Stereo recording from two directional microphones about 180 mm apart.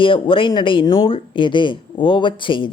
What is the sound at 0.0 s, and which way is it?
Speech, 30° left (ahead or behind).